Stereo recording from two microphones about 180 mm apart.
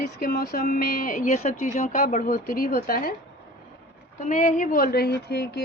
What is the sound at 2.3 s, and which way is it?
Speech, 55° left (ahead or behind).